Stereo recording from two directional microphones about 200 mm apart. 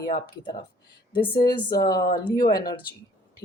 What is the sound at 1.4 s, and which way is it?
Speech, 20° left (ahead or behind).